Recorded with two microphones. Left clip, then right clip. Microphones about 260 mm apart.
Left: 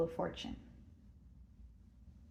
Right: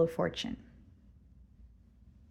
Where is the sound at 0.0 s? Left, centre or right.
Right.